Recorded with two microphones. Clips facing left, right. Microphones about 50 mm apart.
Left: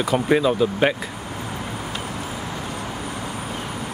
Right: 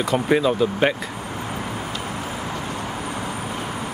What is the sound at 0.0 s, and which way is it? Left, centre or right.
Speech, centre.